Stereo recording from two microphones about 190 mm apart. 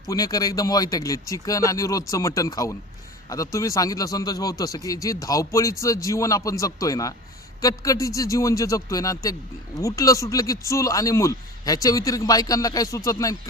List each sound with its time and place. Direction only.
0.1 s speech: 20° left (ahead or behind)